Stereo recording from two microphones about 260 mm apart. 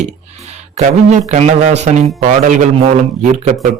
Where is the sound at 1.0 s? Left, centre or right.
Right.